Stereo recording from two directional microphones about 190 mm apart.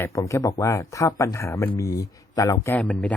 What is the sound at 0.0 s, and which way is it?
Speech, 15° left (ahead or behind).